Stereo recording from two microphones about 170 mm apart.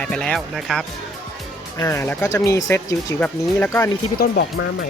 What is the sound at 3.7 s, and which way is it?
Speech, 20° left (ahead or behind).